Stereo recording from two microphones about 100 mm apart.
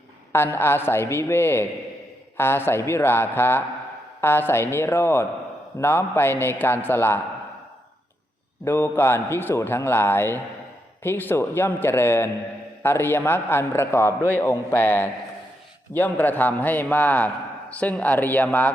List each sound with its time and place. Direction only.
0.3 s a man's voice: 25° left (ahead or behind)
8.6 s a man's voice: 20° left (ahead or behind)